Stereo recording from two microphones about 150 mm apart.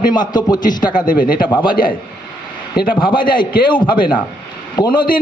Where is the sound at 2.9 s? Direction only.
30° left (ahead or behind).